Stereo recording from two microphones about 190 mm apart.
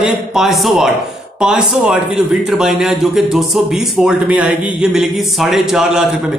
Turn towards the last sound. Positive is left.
turn(degrees=-5)  # may be behind; listen again after turning